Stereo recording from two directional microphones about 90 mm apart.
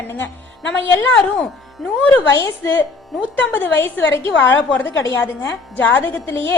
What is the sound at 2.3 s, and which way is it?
Speech, 40° left (ahead or behind).